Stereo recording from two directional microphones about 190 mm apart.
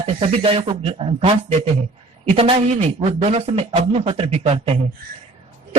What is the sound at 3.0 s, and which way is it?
Speech, 35° right (ahead or behind).